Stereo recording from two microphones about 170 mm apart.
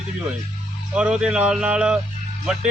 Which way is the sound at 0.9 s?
5° right (ahead or behind).